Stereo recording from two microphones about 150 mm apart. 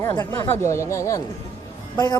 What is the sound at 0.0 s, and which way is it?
A man's voice, 15° left (ahead or behind).